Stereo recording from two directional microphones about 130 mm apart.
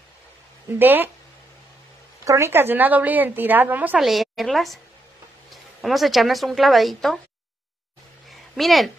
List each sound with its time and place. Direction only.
0.7 s a woman's voice: 15° right (ahead or behind)
2.2 s a woman's voice: 20° right (ahead or behind)
4.0 s a woman's voice: centre (ahead or behind)
8.3 s a sound: centre (ahead or behind)